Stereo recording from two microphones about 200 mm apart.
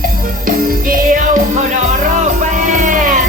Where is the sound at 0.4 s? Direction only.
45° right (ahead or behind).